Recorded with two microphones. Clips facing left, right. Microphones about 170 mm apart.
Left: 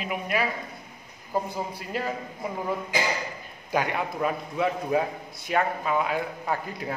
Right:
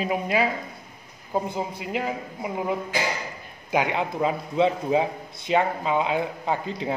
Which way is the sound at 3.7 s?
20° right (ahead or behind).